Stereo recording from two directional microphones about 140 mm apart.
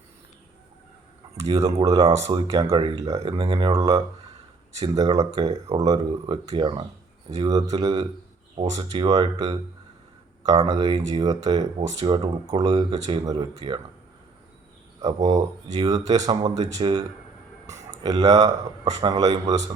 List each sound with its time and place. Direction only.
1.5 s speech: 25° right (ahead or behind)
8.5 s speech: 55° right (ahead or behind)
8.8 s speech: 30° right (ahead or behind)
15.0 s speech: 25° right (ahead or behind)
18.0 s speech: 30° right (ahead or behind)